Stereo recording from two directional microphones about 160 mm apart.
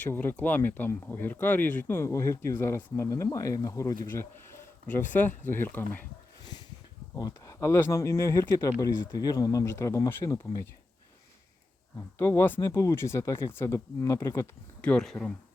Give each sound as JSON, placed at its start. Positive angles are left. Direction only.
{"t": 0.0, "sound": "speech", "side_deg": 10}
{"t": 5.1, "sound": "speech", "side_deg": 15}
{"t": 6.4, "sound": "a sound", "side_deg": 25}
{"t": 7.2, "sound": "speech", "side_deg": 20}
{"t": 12.1, "sound": "speech", "side_deg": 15}